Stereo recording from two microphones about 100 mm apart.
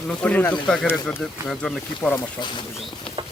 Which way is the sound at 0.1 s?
15° left (ahead or behind).